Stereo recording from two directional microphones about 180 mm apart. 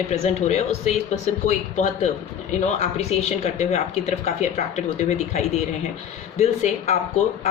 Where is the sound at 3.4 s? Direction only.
40° left (ahead or behind).